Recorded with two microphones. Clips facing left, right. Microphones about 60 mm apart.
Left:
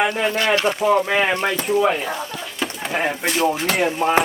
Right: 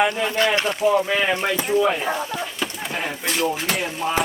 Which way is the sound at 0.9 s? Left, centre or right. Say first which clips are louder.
Left 1 dB; left.